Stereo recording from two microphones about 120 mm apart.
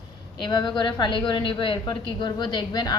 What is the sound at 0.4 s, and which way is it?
A woman's voice, 35° left (ahead or behind).